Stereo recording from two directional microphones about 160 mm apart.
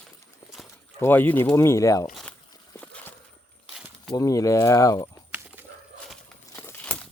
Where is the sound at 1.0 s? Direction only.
10° left (ahead or behind).